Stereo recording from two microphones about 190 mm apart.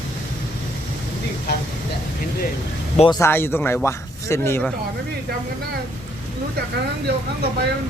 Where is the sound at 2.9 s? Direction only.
30° left (ahead or behind).